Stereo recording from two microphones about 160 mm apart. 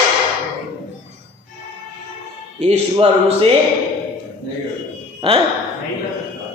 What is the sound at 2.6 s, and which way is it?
Speech, 40° right (ahead or behind).